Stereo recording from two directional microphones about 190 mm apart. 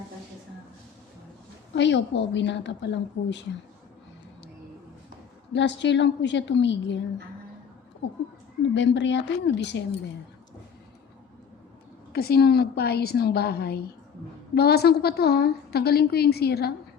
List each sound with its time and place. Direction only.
1.7 s a woman's voice: 70° left (ahead or behind)
5.5 s a woman's voice: 70° left (ahead or behind)
8.7 s a woman's voice: 70° left (ahead or behind)
12.1 s a woman's voice: 55° left (ahead or behind)